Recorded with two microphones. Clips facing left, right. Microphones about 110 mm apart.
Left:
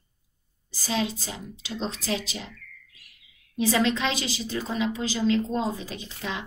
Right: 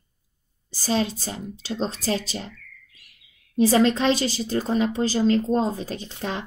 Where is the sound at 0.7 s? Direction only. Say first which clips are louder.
Right 4 dB; 35° right (ahead or behind).